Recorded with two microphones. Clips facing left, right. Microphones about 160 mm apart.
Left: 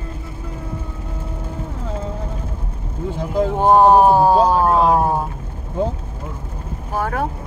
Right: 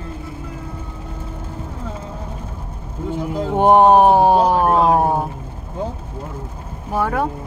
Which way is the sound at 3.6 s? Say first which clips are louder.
Right 1 dB; 20° right (ahead or behind).